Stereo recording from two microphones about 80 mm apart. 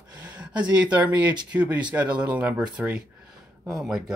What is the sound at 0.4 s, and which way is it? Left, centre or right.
Speech, centre.